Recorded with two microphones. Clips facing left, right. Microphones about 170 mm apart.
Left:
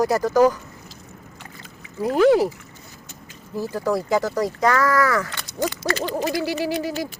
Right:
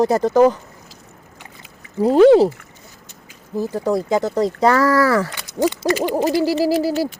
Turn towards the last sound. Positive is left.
turn(degrees=-35)  # may be behind; listen again after turning